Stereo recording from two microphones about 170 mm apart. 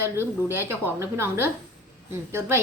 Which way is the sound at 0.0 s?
15° right (ahead or behind).